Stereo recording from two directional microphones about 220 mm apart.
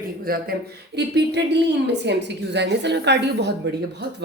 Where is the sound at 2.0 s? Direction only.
50° right (ahead or behind).